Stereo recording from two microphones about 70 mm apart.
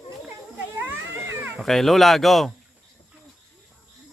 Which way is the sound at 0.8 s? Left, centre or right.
Right.